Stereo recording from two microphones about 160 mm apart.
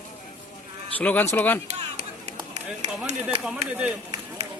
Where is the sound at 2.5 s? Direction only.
45° right (ahead or behind).